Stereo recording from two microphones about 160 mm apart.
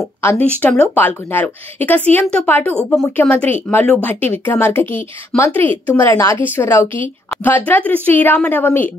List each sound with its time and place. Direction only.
0.2 s a woman's voice: 15° left (ahead or behind)